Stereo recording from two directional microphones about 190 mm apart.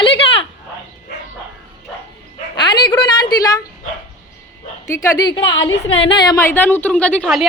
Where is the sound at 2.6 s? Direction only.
25° left (ahead or behind).